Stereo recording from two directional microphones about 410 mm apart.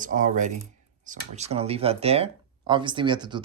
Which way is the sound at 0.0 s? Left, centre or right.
Centre.